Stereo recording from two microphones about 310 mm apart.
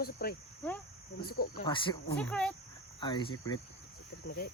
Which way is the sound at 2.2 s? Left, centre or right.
Centre.